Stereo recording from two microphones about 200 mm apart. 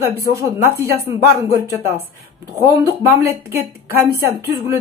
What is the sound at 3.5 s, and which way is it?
Speech, 10° right (ahead or behind).